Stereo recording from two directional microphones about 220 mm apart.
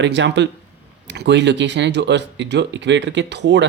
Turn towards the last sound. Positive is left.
turn(degrees=-50)  # may be behind; listen again after turning